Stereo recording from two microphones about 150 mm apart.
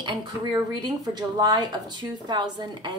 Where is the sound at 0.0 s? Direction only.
30° right (ahead or behind).